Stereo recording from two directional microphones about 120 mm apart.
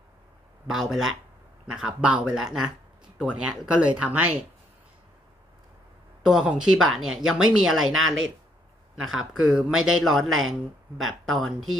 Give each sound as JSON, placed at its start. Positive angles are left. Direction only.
{"t": 0.7, "sound": "speech", "side_deg": -5}
{"t": 6.2, "sound": "speech", "side_deg": -5}